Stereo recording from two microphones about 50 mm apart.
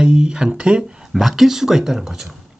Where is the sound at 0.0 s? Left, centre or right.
Centre.